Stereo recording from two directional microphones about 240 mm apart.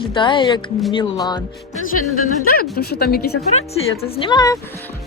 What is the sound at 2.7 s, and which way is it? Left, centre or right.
Speech, left.